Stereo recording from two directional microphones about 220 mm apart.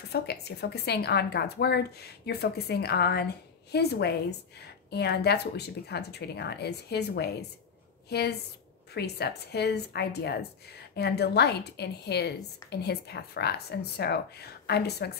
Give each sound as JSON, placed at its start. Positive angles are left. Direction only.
{"t": 0.1, "sound": "a woman's voice", "side_deg": 50}